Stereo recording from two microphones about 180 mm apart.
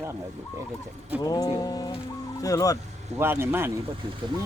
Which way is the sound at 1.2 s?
20° left (ahead or behind).